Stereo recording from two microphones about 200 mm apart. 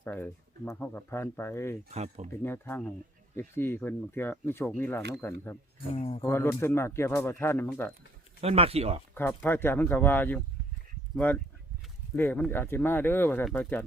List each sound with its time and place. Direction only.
0.0 s speech: 10° left (ahead or behind)
1.9 s speech: 30° right (ahead or behind)
2.4 s speech: 10° left (ahead or behind)
5.9 s speech: 30° left (ahead or behind)
6.2 s speech: 10° left (ahead or behind)
8.4 s speech: 30° right (ahead or behind)
9.1 s speech: 10° left (ahead or behind)